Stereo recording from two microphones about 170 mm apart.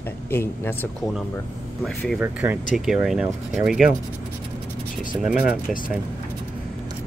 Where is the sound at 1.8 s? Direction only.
Centre (ahead or behind).